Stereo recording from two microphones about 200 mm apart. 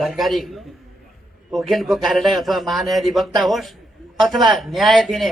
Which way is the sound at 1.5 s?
Centre (ahead or behind).